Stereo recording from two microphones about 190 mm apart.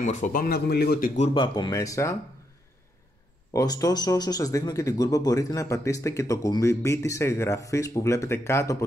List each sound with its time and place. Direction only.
0.0 s speech: 40° left (ahead or behind)
1.1 s speech: 30° left (ahead or behind)
3.5 s speech: 20° left (ahead or behind)